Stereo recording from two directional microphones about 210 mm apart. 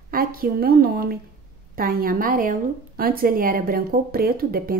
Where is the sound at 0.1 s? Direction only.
45° right (ahead or behind).